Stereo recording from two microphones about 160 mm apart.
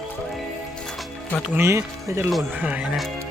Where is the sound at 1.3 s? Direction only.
5° left (ahead or behind).